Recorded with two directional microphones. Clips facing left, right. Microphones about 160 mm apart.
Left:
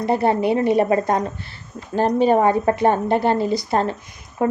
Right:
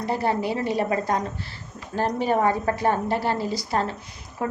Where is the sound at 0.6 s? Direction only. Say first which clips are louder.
Left 7 dB; 60° left (ahead or behind).